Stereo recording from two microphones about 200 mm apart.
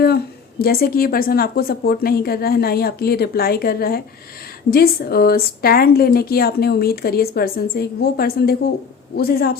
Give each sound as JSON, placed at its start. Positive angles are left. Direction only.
{"t": 0.6, "sound": "a woman's voice", "side_deg": 50}